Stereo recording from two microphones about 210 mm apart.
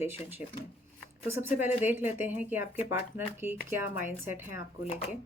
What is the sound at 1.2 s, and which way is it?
Speech, 10° right (ahead or behind).